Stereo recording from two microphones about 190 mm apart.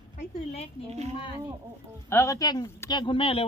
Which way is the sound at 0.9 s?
35° right (ahead or behind).